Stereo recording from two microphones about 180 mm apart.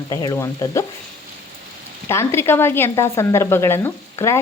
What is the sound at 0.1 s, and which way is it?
Speech, 20° left (ahead or behind).